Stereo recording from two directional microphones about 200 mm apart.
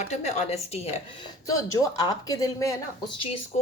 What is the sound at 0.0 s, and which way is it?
Speech, 35° left (ahead or behind).